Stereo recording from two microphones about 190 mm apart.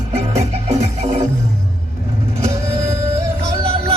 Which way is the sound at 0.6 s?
35° right (ahead or behind).